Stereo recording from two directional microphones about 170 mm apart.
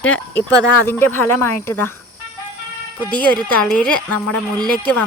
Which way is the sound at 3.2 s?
10° left (ahead or behind).